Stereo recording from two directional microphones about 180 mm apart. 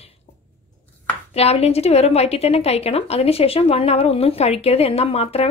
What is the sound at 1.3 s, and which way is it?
A woman's voice, 35° left (ahead or behind).